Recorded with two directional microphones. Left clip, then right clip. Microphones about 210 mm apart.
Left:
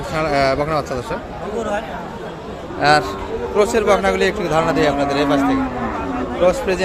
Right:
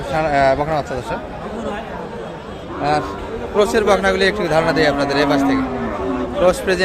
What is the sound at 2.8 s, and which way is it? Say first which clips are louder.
Speech: left 4 dB; 10° left (ahead or behind).